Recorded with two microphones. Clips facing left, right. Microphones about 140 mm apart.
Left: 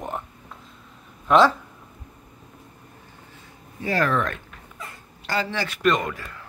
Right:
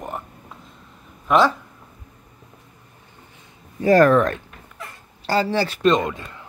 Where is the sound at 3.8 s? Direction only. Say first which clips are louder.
Right 9 dB; 45° right (ahead or behind).